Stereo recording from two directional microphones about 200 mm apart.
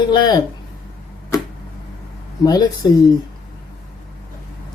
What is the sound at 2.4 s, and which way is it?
Speech, 20° left (ahead or behind).